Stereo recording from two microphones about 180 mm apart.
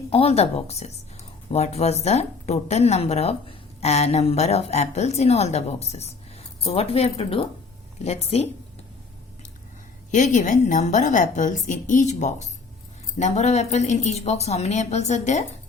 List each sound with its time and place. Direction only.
0.1 s speech: 35° left (ahead or behind)
10.1 s a woman's voice: 45° left (ahead or behind)